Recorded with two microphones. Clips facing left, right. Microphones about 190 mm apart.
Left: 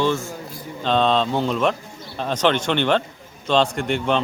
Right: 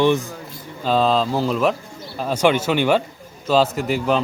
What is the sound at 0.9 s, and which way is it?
A man's voice, 5° right (ahead or behind).